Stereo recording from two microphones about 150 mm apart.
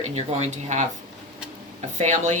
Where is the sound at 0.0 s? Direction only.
45° right (ahead or behind).